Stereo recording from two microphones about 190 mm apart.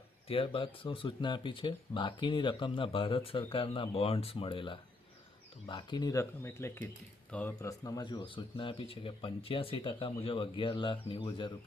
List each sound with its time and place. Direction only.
0.3 s speech: 30° left (ahead or behind)